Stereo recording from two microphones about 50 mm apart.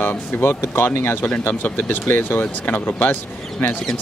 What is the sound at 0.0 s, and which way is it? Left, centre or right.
Speech, left.